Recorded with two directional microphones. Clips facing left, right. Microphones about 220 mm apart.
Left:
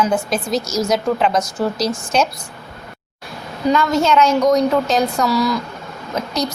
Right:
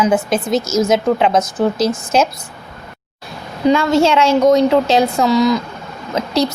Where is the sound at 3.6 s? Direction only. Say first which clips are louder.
Right 4 dB; 25° right (ahead or behind).